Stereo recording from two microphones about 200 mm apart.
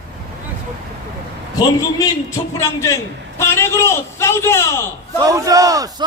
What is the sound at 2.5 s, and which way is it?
A man's voice, 15° left (ahead or behind).